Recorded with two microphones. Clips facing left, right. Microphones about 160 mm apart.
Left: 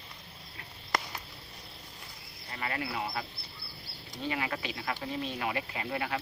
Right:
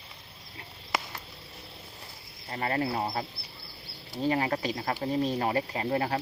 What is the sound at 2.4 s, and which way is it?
Speech, 40° right (ahead or behind).